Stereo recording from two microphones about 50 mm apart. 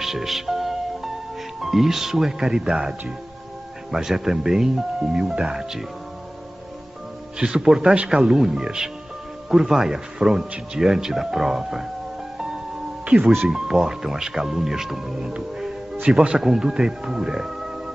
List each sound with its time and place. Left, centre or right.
0.0 s music: centre
1.6 s speech: centre
7.3 s speech: centre
13.5 s speech: centre
15.1 s music: centre
16.1 s speech: centre